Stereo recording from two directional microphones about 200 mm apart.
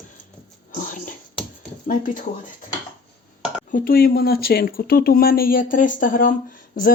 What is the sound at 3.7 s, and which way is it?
Speech, 45° left (ahead or behind).